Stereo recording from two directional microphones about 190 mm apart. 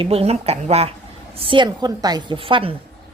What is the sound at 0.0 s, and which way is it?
A woman's voice, 30° right (ahead or behind).